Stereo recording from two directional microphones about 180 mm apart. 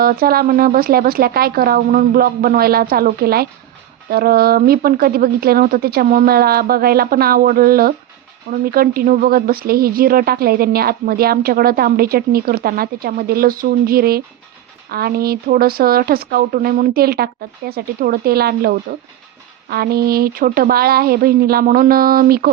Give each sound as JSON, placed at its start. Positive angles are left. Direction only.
{"t": 0.0, "sound": "speech", "side_deg": -55}